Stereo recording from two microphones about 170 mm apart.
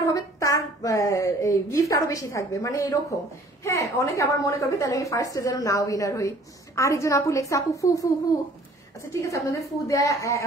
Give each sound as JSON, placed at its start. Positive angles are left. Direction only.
{"t": 0.0, "sound": "a woman's voice", "side_deg": 20}
{"t": 9.1, "sound": "a woman's voice", "side_deg": 20}